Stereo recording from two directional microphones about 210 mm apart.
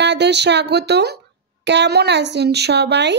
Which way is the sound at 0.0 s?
55° right (ahead or behind).